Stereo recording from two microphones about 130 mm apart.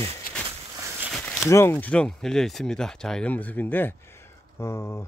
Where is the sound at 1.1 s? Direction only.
Centre (ahead or behind).